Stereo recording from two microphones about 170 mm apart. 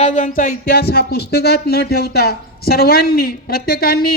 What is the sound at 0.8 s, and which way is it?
Speech, 70° left (ahead or behind).